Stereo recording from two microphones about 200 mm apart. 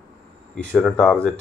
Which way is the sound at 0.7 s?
5° left (ahead or behind).